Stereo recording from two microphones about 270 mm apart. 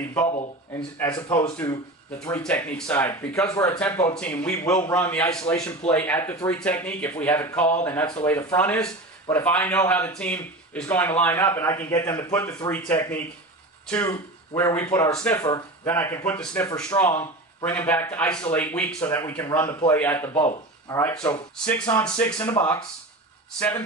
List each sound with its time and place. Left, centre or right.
0.3 s speech: left
0.9 s speech: centre